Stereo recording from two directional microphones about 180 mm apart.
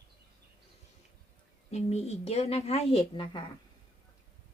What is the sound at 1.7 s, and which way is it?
A woman's voice, 35° left (ahead or behind).